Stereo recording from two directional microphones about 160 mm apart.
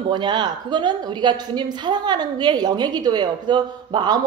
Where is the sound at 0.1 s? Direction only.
30° right (ahead or behind).